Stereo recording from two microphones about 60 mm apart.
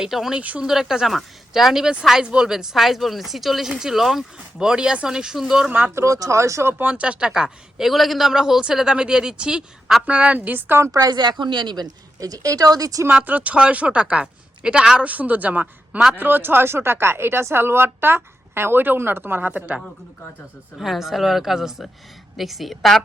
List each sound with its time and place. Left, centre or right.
0.0 s speech: centre
0.3 s speech: right
0.6 s speech: centre
5.9 s speech: right
6.1 s speech: right
6.7 s speech: right
11.8 s speech: right
13.2 s speech: right
20.8 s speech: centre